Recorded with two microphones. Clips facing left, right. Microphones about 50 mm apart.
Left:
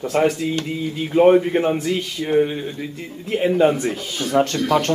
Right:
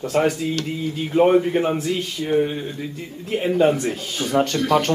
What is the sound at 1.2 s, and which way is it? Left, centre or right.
Speech, centre.